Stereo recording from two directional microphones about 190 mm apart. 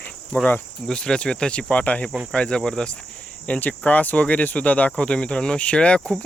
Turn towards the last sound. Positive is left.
turn(degrees=5)  # may be behind; listen again after turning